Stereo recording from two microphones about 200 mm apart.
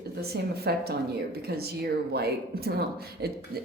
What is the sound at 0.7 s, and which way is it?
Speech, 55° right (ahead or behind).